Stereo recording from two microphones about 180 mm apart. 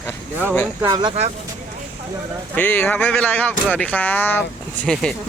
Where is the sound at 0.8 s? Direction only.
20° right (ahead or behind).